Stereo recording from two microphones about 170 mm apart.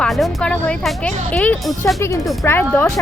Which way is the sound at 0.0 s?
Centre (ahead or behind).